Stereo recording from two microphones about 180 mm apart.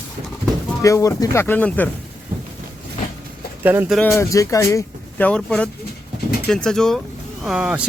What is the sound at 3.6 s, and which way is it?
Speech, 10° right (ahead or behind).